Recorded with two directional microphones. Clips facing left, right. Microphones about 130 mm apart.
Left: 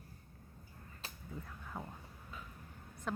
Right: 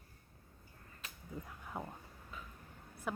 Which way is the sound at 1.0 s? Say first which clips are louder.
Left 2 dB; 30° left (ahead or behind).